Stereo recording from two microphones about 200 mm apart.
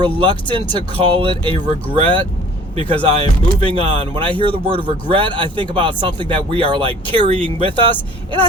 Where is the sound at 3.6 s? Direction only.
25° right (ahead or behind).